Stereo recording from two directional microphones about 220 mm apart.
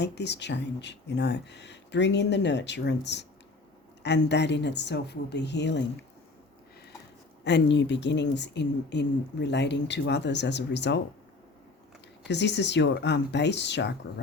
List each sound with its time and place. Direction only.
0.0 s speech: 50° left (ahead or behind)
7.4 s speech: 50° left (ahead or behind)
12.3 s speech: 50° left (ahead or behind)